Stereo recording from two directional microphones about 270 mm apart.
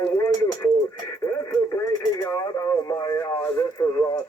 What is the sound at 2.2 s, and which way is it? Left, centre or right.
Radio, centre.